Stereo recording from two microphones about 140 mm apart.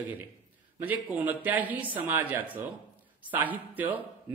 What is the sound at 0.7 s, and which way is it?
A man's voice, 10° right (ahead or behind).